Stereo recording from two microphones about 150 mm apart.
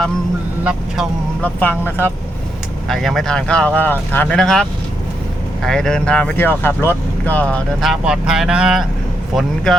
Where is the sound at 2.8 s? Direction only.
Centre (ahead or behind).